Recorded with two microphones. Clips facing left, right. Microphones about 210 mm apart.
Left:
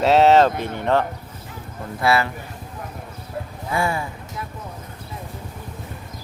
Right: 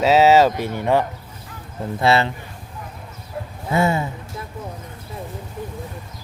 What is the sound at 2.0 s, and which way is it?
Speech, 25° right (ahead or behind).